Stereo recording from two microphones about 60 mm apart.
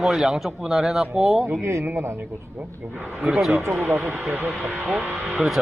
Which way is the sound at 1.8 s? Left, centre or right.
Right.